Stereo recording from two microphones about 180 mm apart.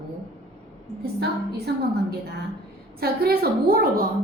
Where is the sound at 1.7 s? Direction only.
65° right (ahead or behind).